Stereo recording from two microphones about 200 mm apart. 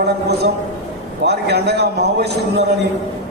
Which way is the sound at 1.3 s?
55° right (ahead or behind).